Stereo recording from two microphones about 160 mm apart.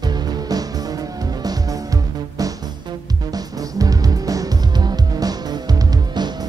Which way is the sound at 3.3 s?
25° right (ahead or behind).